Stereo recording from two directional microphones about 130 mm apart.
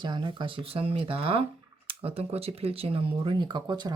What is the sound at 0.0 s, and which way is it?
Speech, 35° right (ahead or behind).